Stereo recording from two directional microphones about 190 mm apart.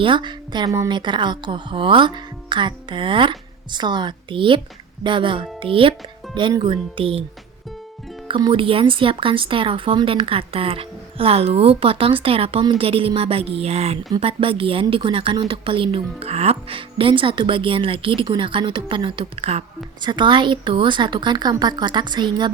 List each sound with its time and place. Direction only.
0.0 s a woman's voice: 25° right (ahead or behind)
8.3 s a woman's voice: 25° right (ahead or behind)